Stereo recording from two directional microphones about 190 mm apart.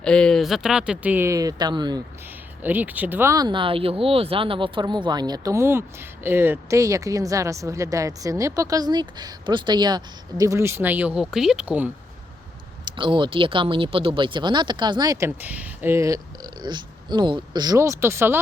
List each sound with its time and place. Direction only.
0.0 s speech: 5° left (ahead or behind); by 2.0 s 20° right (ahead or behind)
2.6 s speech: 10° right (ahead or behind)
13.0 s speech: 25° right (ahead or behind)